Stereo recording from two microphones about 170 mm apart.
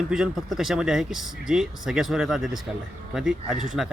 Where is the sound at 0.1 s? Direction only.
5° right (ahead or behind).